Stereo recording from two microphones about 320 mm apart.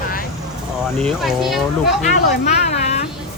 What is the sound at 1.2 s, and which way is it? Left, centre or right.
Speech, centre.